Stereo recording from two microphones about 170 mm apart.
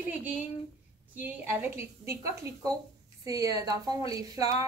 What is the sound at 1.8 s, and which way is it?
Speech, 35° left (ahead or behind).